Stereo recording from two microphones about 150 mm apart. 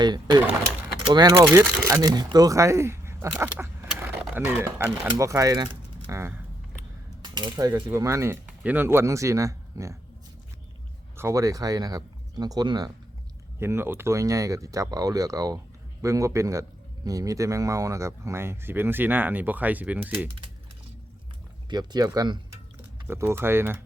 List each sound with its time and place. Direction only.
0.0 s speech: 30° right (ahead or behind); by 2.0 s 15° right (ahead or behind)
2.0 s speech: 25° right (ahead or behind)
7.2 s speech: 30° right (ahead or behind)
11.2 s speech: 20° right (ahead or behind)
13.6 s speech: 15° right (ahead or behind)
21.7 s speech: 25° right (ahead or behind)